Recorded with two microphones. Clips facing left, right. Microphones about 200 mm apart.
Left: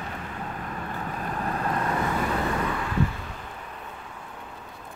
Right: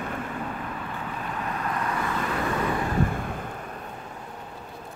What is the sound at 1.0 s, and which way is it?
Vehicle, 40° left (ahead or behind).